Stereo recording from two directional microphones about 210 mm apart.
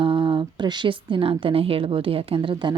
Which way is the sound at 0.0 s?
25° right (ahead or behind).